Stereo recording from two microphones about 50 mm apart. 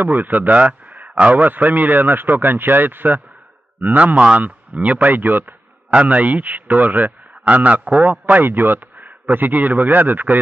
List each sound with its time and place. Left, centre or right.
0.0 s a man's voice: right
0.6 s a sound: right
1.1 s speech: right
1.4 s a man's voice: right